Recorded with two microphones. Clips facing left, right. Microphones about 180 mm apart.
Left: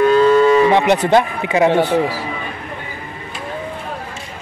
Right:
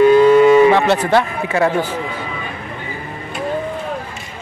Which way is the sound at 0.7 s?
20° left (ahead or behind).